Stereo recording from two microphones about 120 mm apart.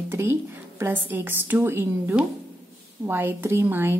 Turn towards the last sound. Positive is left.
turn(degrees=-20)  # may be behind; listen again after turning